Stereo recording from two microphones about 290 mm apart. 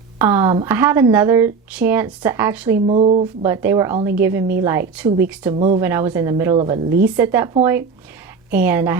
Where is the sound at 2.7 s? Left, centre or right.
Right.